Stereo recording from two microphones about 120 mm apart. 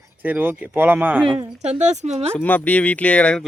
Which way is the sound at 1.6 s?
70° right (ahead or behind).